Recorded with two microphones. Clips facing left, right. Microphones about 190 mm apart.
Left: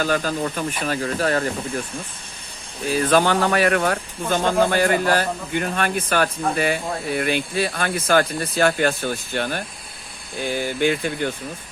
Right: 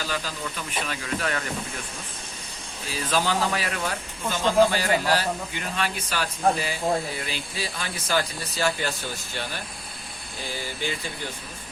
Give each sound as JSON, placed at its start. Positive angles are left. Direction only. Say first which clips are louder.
{"t": 0.0, "sound": "speech", "louder": "left 9 dB", "side_deg": 50}
{"t": 2.8, "sound": "speech", "louder": "left 8 dB", "side_deg": 55}